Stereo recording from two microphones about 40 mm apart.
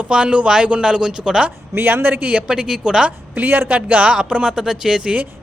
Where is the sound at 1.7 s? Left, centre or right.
Right.